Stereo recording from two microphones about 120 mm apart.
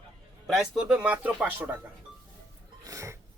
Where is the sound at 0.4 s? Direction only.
Centre (ahead or behind).